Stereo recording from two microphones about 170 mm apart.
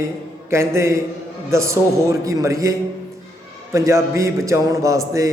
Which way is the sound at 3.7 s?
15° right (ahead or behind).